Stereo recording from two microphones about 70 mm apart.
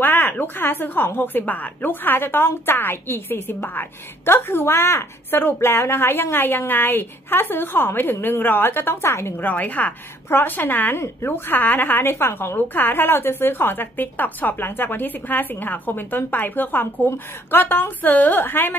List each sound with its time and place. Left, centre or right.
0.0 s a woman's voice: left
9.4 s a woman's voice: left